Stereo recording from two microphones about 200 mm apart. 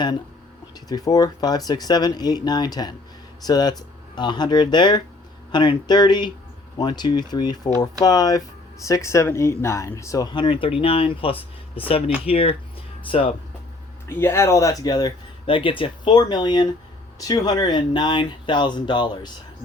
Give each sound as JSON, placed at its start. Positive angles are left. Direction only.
{"t": 0.9, "sound": "speech", "side_deg": 20}
{"t": 14.1, "sound": "speech", "side_deg": 10}